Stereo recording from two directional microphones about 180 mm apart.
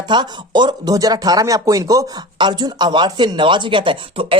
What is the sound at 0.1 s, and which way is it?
Speech, 25° right (ahead or behind).